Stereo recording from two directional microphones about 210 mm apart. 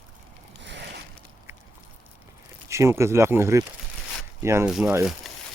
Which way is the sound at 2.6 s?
15° right (ahead or behind).